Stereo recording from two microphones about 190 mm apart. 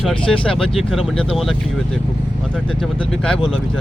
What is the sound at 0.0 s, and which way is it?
Speech, 5° left (ahead or behind).